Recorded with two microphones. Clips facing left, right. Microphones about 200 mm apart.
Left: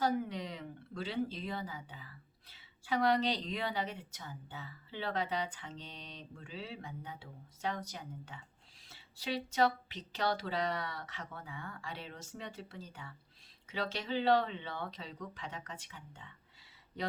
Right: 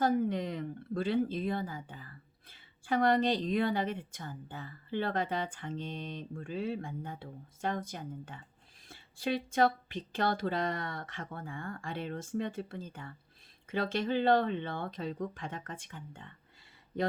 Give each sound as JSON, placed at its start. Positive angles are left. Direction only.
{"t": 0.0, "sound": "speech", "side_deg": -50}